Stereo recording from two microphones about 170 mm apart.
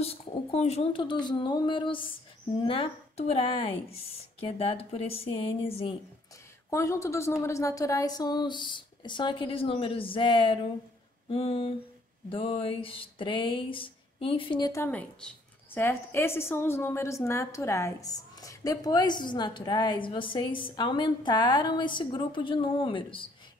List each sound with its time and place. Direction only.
0.0 s speech: 35° left (ahead or behind)
6.7 s a woman's voice: 15° left (ahead or behind)
14.7 s a woman's voice: 10° left (ahead or behind); by 23.0 s 30° left (ahead or behind)